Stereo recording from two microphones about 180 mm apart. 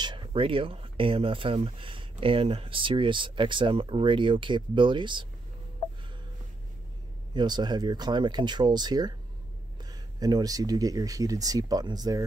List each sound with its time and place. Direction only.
0.0 s speech: 25° right (ahead or behind)
7.3 s speech: 25° right (ahead or behind)